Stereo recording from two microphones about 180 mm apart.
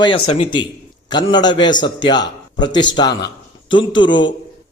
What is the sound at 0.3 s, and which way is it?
Speech, 35° left (ahead or behind).